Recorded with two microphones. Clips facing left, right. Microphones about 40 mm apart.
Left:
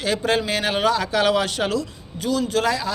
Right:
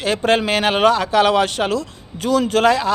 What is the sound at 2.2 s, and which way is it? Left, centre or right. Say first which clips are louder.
Speech: right 6 dB; right.